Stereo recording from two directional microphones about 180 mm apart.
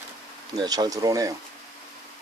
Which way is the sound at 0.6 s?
20° right (ahead or behind).